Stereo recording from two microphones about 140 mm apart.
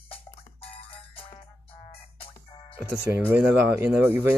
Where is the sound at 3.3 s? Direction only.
15° right (ahead or behind).